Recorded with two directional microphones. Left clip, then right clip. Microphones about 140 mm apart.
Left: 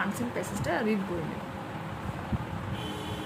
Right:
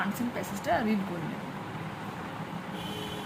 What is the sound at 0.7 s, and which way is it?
Speech, 15° left (ahead or behind).